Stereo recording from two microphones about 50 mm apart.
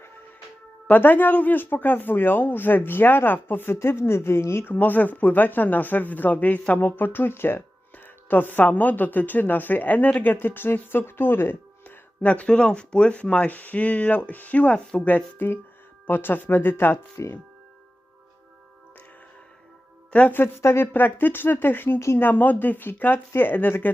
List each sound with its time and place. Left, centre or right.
0.9 s speech: left
4.6 s speech: left
12.2 s speech: left
15.1 s speech: left
20.1 s speech: left
20.6 s speech: left
20.9 s speech: left